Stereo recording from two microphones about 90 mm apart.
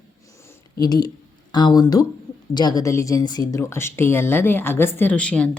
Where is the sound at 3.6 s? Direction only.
30° left (ahead or behind).